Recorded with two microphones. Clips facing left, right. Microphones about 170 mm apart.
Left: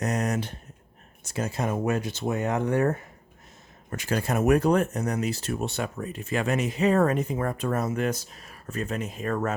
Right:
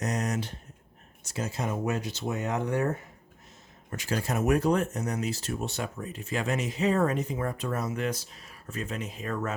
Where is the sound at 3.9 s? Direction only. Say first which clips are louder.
Left 3 dB; 55° left (ahead or behind).